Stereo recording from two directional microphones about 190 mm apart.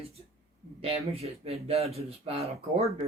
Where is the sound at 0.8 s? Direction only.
30° right (ahead or behind).